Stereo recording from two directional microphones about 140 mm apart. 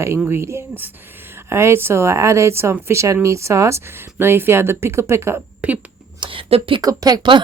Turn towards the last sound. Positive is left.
turn(degrees=-30)  # may be behind; listen again after turning